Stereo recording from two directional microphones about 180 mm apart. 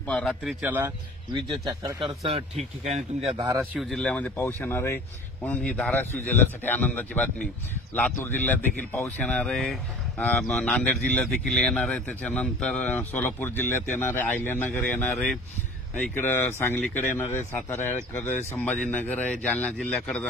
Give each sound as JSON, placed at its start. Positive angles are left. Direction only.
{"t": 0.0, "sound": "speech", "side_deg": 5}
{"t": 2.0, "sound": "speech", "side_deg": -30}
{"t": 3.3, "sound": "speech", "side_deg": -20}
{"t": 3.7, "sound": "speech", "side_deg": 5}